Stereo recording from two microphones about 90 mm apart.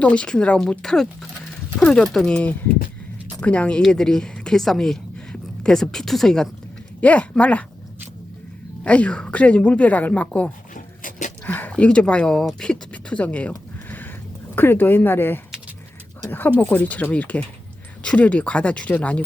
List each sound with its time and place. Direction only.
0.0 s a woman's voice: 15° left (ahead or behind)
7.0 s a woman's voice: 15° left (ahead or behind)
8.8 s a woman's voice: 15° left (ahead or behind)
14.5 s a woman's voice: 25° left (ahead or behind)